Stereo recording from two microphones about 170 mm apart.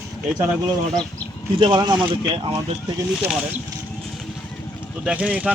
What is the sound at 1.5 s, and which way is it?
Speech, 25° right (ahead or behind).